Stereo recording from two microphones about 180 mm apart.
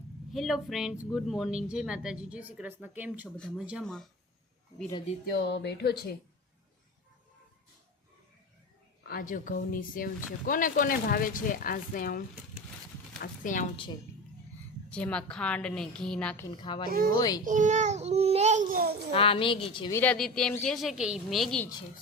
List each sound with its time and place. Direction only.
0.3 s speech: centre (ahead or behind)
3.3 s speech: 5° left (ahead or behind)
5.2 s speech: 65° left (ahead or behind)
9.0 s speech: 50° left (ahead or behind)
14.8 s speech: 5° left (ahead or behind)
16.5 s a woman's voice: 25° left (ahead or behind)
16.8 s speech: 55° right (ahead or behind)
17.2 s a woman's voice: 20° left (ahead or behind)
17.4 s a child's voice: 45° right (ahead or behind)
18.7 s a child's voice: 55° right (ahead or behind)
19.1 s a woman's voice: 30° left (ahead or behind)
19.9 s speech: 10° left (ahead or behind)